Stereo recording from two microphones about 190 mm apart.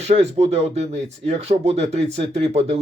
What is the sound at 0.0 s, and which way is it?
Speech, 35° right (ahead or behind).